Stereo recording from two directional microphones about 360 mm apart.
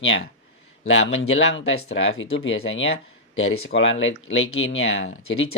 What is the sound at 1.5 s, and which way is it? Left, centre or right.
Speech, left.